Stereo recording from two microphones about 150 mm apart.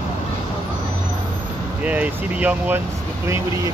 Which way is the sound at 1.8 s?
10° right (ahead or behind).